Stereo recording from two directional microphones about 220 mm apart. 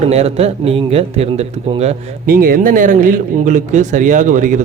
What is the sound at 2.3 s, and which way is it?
Speech, 40° right (ahead or behind).